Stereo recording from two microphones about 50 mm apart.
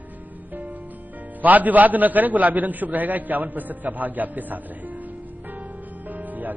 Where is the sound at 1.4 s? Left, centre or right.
Right.